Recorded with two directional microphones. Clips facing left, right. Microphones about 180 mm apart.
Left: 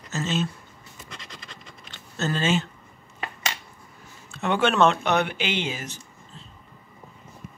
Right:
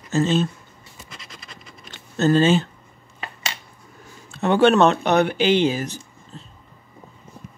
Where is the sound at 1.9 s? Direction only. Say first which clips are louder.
Right 10 dB; 40° right (ahead or behind).